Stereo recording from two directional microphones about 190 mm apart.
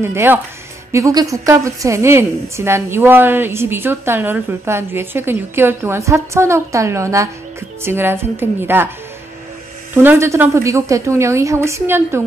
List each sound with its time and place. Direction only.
0.0 s a woman's voice: 10° right (ahead or behind)
10.0 s a woman's voice: 15° right (ahead or behind)